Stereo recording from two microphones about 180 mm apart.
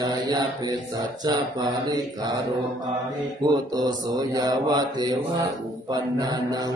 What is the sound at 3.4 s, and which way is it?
Mantra, 20° right (ahead or behind).